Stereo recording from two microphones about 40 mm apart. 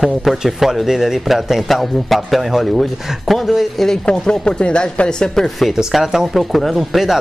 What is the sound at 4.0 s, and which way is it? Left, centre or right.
Speech, left.